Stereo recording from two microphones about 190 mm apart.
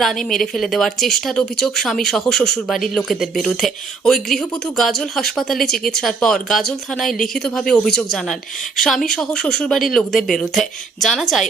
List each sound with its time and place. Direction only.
0.0 s speech: centre (ahead or behind)